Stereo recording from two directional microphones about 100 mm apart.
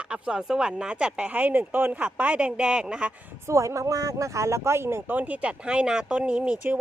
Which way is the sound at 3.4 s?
30° right (ahead or behind).